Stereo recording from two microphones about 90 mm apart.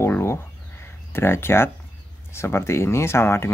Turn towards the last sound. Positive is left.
turn(degrees=30)  # may be behind; listen again after turning